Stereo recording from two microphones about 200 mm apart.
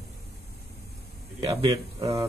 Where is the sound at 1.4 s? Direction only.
25° right (ahead or behind).